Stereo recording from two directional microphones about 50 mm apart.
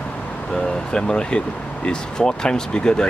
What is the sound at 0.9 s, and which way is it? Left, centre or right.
Speech, centre.